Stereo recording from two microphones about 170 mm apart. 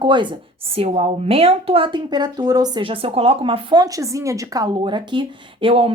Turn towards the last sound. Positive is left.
turn(degrees=-30)  # may be behind; listen again after turning